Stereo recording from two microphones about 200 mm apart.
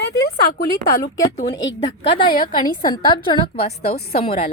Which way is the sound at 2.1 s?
25° left (ahead or behind).